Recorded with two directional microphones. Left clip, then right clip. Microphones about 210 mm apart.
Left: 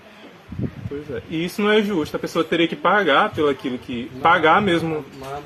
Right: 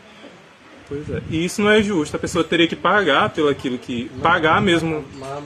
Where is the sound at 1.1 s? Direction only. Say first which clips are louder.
Right 3 dB; 25° right (ahead or behind).